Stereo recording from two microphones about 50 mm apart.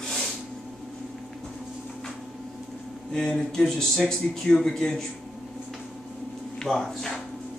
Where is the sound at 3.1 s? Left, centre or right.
Centre.